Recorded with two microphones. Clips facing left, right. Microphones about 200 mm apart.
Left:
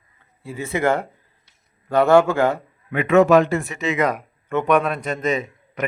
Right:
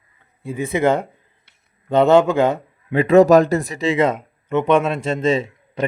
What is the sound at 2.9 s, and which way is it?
A man's voice, 35° right (ahead or behind).